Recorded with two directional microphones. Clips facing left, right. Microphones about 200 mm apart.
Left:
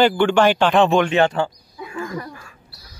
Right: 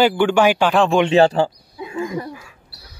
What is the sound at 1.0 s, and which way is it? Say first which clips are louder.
Speech: right 4 dB; 30° right (ahead or behind).